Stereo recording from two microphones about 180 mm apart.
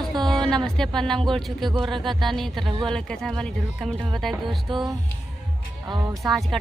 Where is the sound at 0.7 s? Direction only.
5° left (ahead or behind).